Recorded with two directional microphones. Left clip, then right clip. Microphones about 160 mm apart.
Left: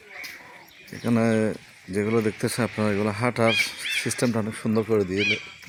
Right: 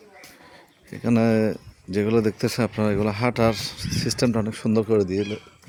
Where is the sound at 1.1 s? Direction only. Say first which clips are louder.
Right 2 dB; 25° right (ahead or behind).